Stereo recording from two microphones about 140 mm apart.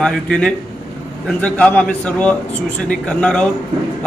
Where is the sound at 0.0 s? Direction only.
5° left (ahead or behind).